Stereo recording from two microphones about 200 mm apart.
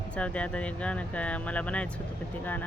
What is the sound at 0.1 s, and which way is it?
Speech, 5° left (ahead or behind).